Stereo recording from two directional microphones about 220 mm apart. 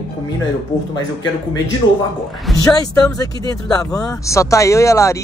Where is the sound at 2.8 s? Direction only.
15° left (ahead or behind).